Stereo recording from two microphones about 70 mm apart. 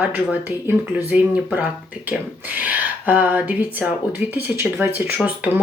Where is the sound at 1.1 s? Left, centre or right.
Centre.